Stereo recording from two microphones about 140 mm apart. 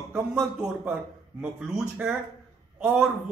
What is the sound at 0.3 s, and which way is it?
A man's voice, 15° right (ahead or behind).